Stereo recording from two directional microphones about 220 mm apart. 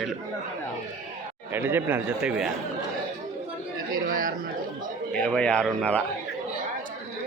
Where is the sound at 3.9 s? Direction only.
40° right (ahead or behind).